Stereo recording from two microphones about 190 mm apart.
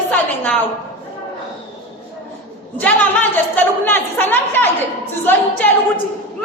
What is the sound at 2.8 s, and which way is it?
A woman's voice, 10° left (ahead or behind).